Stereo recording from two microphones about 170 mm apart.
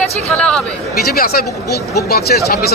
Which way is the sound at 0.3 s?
5° left (ahead or behind).